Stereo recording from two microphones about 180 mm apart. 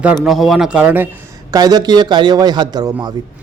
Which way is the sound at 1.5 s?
20° right (ahead or behind).